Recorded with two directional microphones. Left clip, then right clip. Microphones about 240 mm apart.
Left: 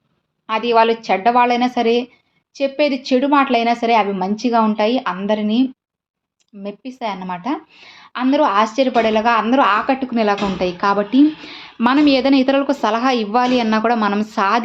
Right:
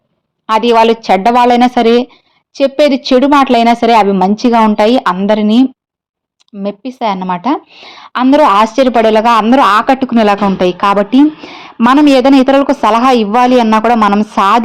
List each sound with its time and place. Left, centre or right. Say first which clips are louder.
0.4 s a woman's voice: right 7 dB; right